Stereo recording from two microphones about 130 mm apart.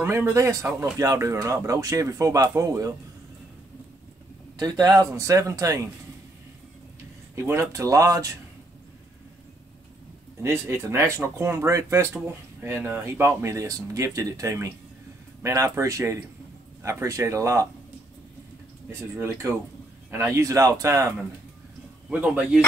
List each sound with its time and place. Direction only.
0.0 s speech: 20° right (ahead or behind)
4.6 s speech: 30° right (ahead or behind)
7.3 s speech: 20° right (ahead or behind)
10.4 s speech: 20° right (ahead or behind)
18.9 s speech: 20° right (ahead or behind)
22.1 s speech: 10° right (ahead or behind)